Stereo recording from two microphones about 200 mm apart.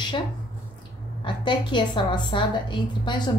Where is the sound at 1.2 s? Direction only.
25° left (ahead or behind).